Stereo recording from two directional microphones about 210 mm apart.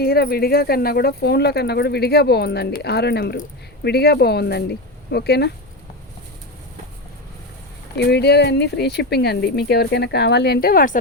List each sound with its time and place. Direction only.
0.0 s speech: 45° left (ahead or behind)
7.9 s speech: 55° left (ahead or behind)